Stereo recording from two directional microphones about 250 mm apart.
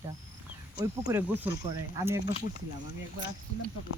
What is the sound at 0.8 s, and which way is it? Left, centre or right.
Speech, centre.